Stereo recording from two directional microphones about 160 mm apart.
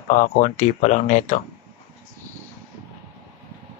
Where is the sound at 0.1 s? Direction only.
50° left (ahead or behind).